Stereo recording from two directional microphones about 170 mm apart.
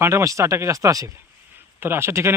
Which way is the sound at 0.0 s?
15° right (ahead or behind).